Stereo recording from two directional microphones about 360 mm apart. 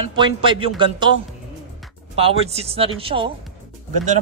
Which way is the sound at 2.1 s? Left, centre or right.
Centre.